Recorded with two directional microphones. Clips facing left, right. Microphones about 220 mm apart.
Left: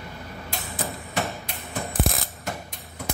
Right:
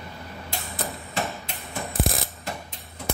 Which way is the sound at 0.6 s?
Centre (ahead or behind).